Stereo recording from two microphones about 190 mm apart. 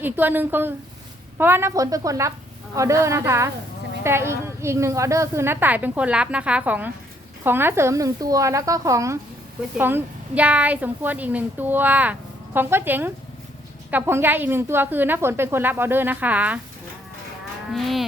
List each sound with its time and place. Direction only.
0.0 s a woman's voice: 10° right (ahead or behind)
17.7 s moo: centre (ahead or behind)